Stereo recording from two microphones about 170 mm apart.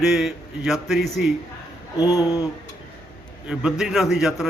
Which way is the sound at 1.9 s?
20° left (ahead or behind).